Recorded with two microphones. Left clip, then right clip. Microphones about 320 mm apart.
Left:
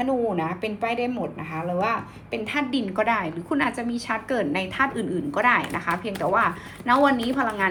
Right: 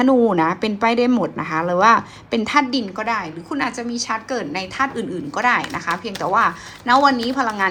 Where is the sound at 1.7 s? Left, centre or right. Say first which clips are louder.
Right 12 dB; right.